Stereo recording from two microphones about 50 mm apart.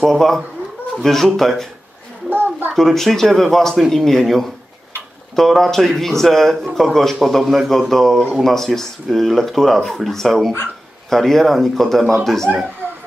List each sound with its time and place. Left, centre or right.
0.0 s speech: centre
2.2 s a sound: right
2.7 s speech: centre
12.8 s music: right